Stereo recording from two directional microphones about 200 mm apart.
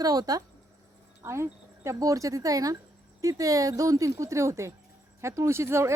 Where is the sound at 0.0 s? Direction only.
20° right (ahead or behind).